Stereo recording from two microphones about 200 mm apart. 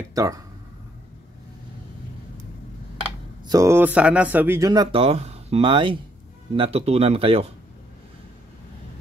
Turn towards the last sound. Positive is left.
turn(degrees=-30)  # may be behind; listen again after turning